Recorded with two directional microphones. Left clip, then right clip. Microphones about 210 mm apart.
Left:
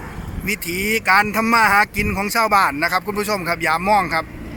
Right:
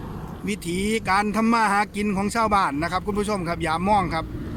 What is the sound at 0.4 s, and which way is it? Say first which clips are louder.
Speech: left 6 dB; 5° right (ahead or behind).